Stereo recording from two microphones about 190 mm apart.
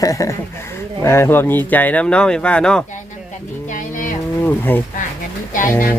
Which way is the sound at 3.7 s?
45° left (ahead or behind).